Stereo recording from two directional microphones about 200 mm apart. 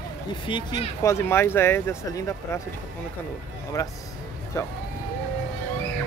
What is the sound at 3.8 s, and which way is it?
Speech, 15° left (ahead or behind).